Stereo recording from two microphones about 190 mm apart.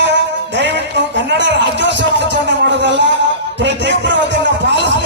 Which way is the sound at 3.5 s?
70° right (ahead or behind).